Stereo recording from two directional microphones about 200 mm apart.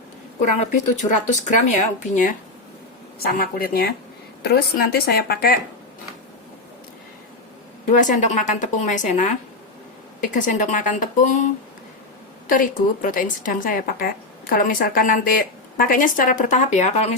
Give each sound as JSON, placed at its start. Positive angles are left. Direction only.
{"t": 0.7, "sound": "speech", "side_deg": 40}
{"t": 3.3, "sound": "a woman's voice", "side_deg": 50}
{"t": 7.9, "sound": "speech", "side_deg": 40}
{"t": 12.5, "sound": "a woman's voice", "side_deg": 40}